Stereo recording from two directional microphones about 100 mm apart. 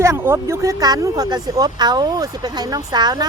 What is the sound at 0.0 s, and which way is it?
Speech, 25° right (ahead or behind).